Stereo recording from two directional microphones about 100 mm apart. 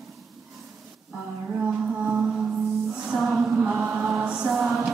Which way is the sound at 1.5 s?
10° right (ahead or behind).